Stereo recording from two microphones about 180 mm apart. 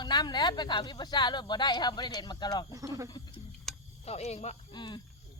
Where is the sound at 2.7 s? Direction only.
20° right (ahead or behind).